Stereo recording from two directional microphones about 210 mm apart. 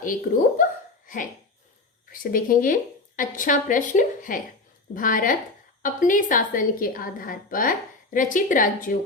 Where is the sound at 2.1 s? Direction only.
40° left (ahead or behind).